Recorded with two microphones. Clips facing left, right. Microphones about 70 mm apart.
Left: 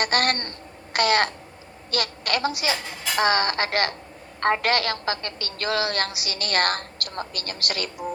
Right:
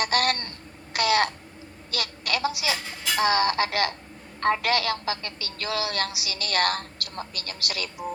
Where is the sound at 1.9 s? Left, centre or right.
Left.